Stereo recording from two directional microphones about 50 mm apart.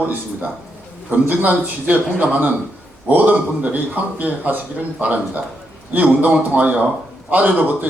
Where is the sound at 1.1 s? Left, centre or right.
Right.